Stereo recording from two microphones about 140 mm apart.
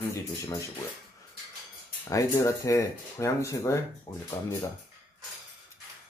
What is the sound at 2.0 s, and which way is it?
Speech, 20° left (ahead or behind).